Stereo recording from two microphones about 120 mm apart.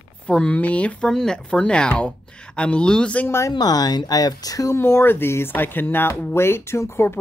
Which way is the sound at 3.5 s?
35° left (ahead or behind).